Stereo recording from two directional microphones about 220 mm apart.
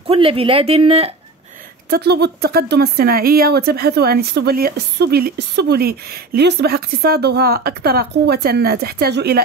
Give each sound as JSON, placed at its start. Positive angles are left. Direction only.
{"t": 0.0, "sound": "speech", "side_deg": -25}
{"t": 1.9, "sound": "speech", "side_deg": -50}